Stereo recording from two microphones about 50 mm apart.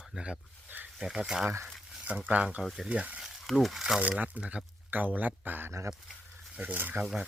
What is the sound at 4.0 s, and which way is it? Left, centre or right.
Speech, right.